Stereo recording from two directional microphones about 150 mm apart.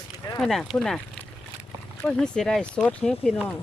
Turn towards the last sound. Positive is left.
turn(degrees=5)  # may be behind; listen again after turning